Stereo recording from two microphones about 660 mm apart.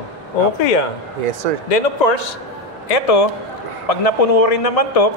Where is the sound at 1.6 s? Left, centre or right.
Left.